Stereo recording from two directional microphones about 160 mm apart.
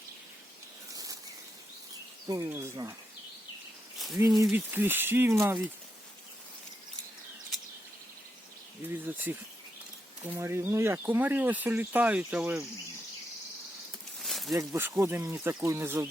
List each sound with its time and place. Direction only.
0.9 s insect: 20° right (ahead or behind)
2.2 s speech: 20° right (ahead or behind)
3.9 s a sound: centre (ahead or behind)
4.5 s speech: 10° right (ahead or behind)
8.9 s speech: 10° right (ahead or behind)
14.2 s a sound: centre (ahead or behind)
14.5 s speech: 20° right (ahead or behind)